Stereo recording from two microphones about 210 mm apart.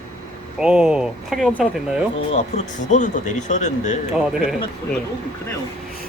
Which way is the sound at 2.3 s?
30° left (ahead or behind).